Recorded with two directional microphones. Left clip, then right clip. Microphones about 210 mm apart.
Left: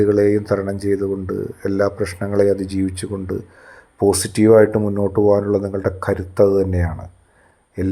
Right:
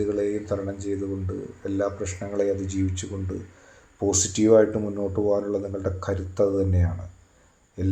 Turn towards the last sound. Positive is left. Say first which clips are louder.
# left 7 dB
turn(degrees=35)  # may be behind; listen again after turning